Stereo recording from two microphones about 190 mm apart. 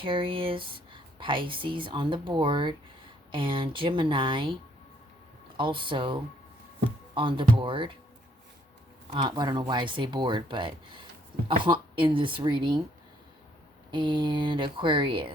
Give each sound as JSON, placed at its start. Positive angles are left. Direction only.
{"t": 0.0, "sound": "speech", "side_deg": -25}
{"t": 5.5, "sound": "speech", "side_deg": -25}
{"t": 9.1, "sound": "speech", "side_deg": -25}
{"t": 13.9, "sound": "speech", "side_deg": -25}